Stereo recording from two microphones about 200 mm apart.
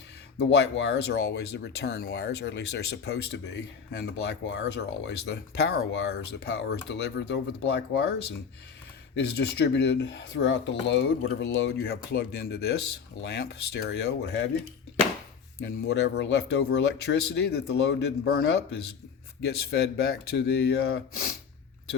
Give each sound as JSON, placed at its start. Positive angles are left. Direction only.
{"t": 0.3, "sound": "speech", "side_deg": 60}
{"t": 9.1, "sound": "speech", "side_deg": 55}
{"t": 15.9, "sound": "speech", "side_deg": 55}